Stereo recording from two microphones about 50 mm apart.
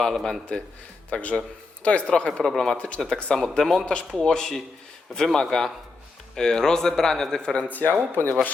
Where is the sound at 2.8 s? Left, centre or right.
Left.